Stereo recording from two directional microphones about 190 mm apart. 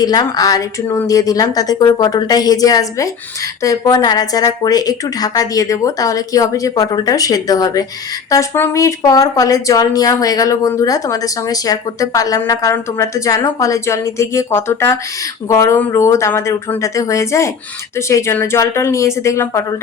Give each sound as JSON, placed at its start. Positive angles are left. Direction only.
{"t": 0.0, "sound": "a woman's voice", "side_deg": 20}